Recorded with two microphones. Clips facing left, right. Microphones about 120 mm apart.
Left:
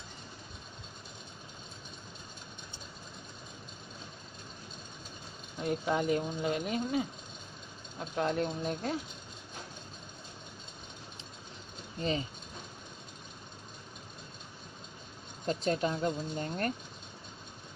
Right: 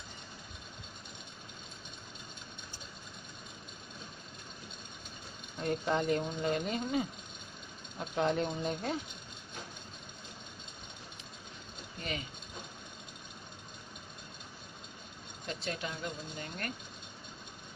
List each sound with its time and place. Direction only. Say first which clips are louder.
5.6 s speech: left 1 dB; 5° left (ahead or behind)
12.0 s speech: left 7 dB; 30° left (ahead or behind)
15.4 s speech: left 8 dB; 35° left (ahead or behind)